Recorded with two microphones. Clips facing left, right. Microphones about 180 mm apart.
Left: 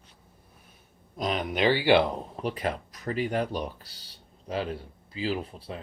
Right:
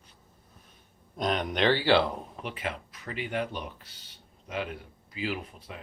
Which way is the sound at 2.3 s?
40° left (ahead or behind).